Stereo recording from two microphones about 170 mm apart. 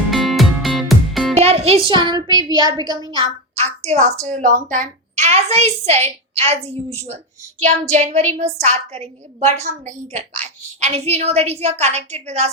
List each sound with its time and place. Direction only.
0.1 s music: centre (ahead or behind)
1.4 s speech: 35° right (ahead or behind)
3.9 s a woman's voice: 45° right (ahead or behind)